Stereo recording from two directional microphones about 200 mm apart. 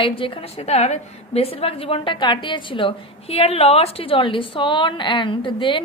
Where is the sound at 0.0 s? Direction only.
25° left (ahead or behind).